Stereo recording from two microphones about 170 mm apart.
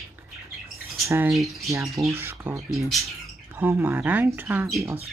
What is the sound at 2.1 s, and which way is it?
Speech, 15° right (ahead or behind).